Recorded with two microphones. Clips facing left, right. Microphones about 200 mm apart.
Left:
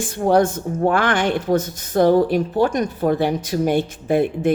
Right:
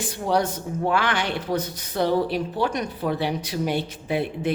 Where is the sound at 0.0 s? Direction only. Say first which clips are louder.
Left 7 dB; 50° left (ahead or behind).